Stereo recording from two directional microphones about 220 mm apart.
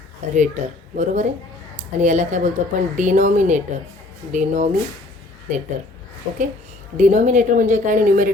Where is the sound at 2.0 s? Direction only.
35° right (ahead or behind).